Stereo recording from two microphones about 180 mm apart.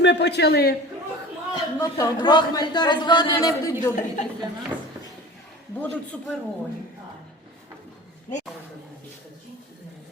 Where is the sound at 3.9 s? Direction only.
45° left (ahead or behind).